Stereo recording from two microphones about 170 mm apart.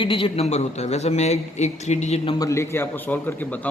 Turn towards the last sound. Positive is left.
turn(degrees=10)  # may be behind; listen again after turning